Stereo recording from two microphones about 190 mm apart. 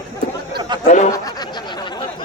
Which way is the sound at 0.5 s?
25° right (ahead or behind).